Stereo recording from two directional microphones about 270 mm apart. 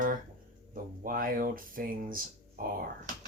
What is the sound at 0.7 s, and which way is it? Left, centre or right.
Speech, right.